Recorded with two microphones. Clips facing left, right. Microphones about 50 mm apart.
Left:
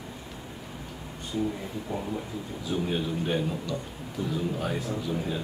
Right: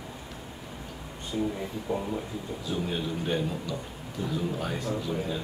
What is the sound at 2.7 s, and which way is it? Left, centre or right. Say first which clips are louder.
Speech: left 2 dB; centre.